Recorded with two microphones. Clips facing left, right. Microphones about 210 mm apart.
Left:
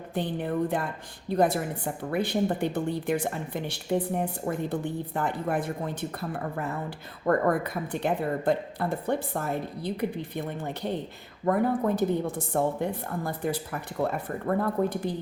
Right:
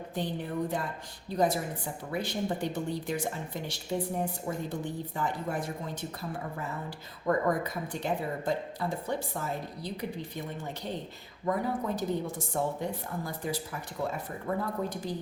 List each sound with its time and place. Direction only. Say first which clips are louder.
0.1 s speech: left 5 dB; 60° left (ahead or behind)